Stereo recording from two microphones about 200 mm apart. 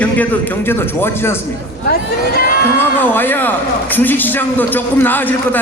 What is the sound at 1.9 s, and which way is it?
Speech, 50° left (ahead or behind).